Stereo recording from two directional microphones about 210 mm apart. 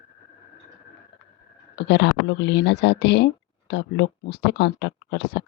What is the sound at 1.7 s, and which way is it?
Speech, 55° left (ahead or behind).